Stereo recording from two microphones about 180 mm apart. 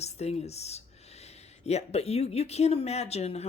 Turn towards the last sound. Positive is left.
turn(degrees=35)  # may be behind; listen again after turning